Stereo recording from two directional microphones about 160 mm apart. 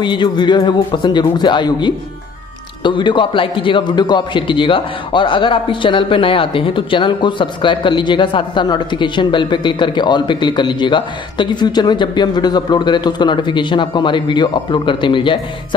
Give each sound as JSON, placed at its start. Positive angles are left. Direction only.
{"t": 0.0, "sound": "a man's voice", "side_deg": 30}